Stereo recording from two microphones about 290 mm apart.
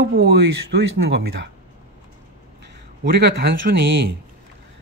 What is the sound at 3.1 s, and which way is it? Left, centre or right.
Speech, right.